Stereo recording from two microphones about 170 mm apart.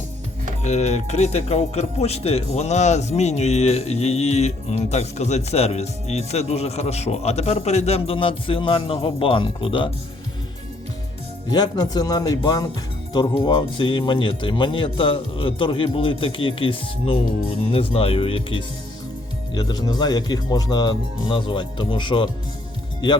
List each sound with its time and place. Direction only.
0.6 s speech: 40° left (ahead or behind)
11.5 s speech: 25° left (ahead or behind)